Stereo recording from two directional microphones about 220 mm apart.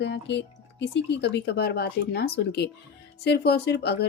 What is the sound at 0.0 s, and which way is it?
Speech, 50° left (ahead or behind).